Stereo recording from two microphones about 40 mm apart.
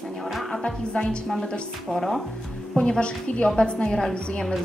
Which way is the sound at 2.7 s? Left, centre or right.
Left.